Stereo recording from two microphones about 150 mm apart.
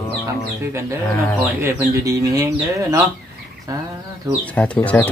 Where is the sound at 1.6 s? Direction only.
20° right (ahead or behind).